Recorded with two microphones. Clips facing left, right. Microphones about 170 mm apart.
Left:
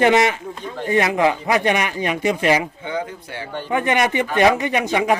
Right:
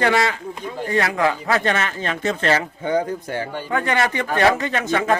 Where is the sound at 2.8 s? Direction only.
45° right (ahead or behind).